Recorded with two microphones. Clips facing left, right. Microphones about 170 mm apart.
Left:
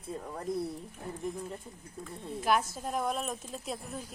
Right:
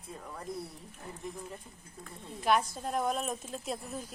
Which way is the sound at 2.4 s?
Centre (ahead or behind).